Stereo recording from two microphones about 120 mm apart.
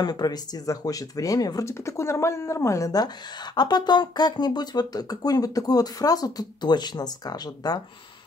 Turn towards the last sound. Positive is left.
turn(degrees=35)  # may be behind; listen again after turning